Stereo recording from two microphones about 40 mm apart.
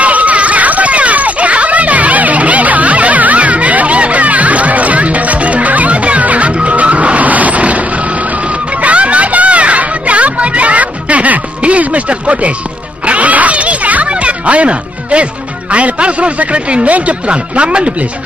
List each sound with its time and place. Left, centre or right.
0.0 s children playing: right
13.0 s music: right
15.7 s a man's voice: right